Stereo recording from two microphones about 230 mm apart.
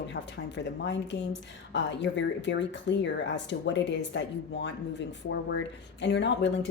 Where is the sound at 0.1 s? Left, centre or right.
Left.